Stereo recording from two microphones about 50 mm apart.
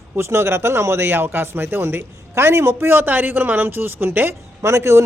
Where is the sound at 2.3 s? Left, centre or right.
Right.